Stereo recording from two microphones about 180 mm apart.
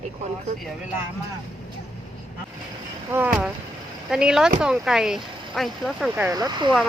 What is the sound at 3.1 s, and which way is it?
Speech, 10° right (ahead or behind).